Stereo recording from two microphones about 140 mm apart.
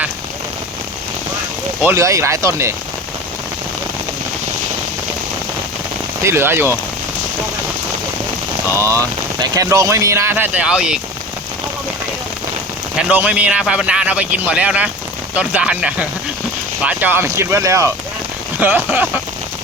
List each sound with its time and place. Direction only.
1.8 s speech: 20° right (ahead or behind)
6.2 s a man's voice: 20° right (ahead or behind)
8.7 s speech: 20° right (ahead or behind)
13.0 s a man's voice: 10° right (ahead or behind)